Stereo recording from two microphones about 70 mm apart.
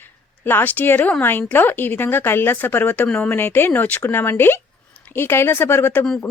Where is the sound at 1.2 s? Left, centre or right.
Left.